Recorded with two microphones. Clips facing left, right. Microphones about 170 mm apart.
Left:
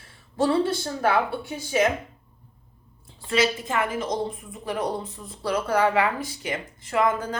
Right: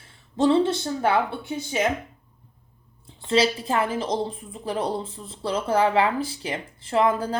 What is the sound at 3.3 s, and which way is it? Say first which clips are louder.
A woman's voice: right 2 dB; 30° right (ahead or behind).